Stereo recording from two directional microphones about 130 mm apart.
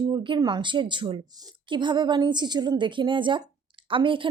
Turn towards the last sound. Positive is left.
turn(degrees=-40)  # may be behind; listen again after turning